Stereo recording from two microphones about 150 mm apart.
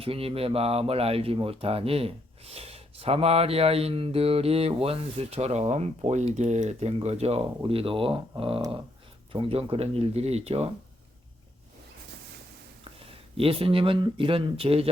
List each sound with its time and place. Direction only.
0.0 s speech: 40° right (ahead or behind)
13.1 s speech: 40° right (ahead or behind)